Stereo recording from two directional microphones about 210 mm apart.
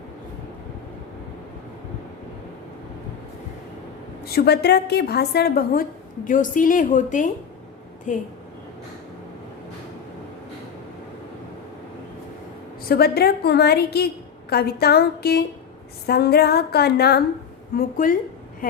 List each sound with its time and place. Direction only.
4.3 s a woman's voice: 50° left (ahead or behind)
12.8 s a woman's voice: 45° left (ahead or behind)